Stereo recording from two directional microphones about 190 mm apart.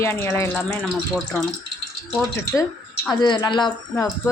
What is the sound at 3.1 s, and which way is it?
Speech, 25° left (ahead or behind).